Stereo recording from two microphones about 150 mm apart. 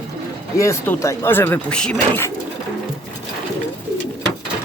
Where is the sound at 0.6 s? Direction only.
15° left (ahead or behind).